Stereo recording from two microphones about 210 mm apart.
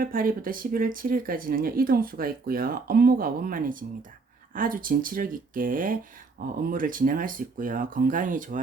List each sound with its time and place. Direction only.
0.0 s speech: 40° right (ahead or behind)